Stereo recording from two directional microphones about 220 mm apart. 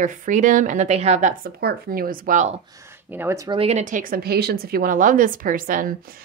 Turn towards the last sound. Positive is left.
turn(degrees=-40)  # may be behind; listen again after turning